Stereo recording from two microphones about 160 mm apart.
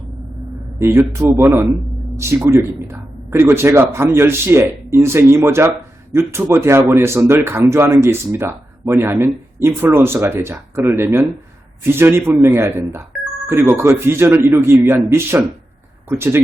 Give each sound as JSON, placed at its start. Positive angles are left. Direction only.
{"t": 0.8, "sound": "speech", "side_deg": -20}